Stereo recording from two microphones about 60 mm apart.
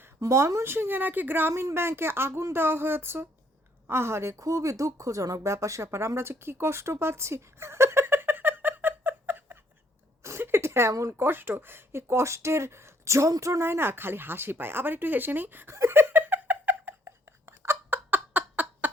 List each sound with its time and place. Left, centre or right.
0.2 s speech: right
0.7 s speech: right
6.1 s a sound: right
11.2 s speech: right
13.7 s speech: right
15.7 s giggle: right
17.4 s a sound: right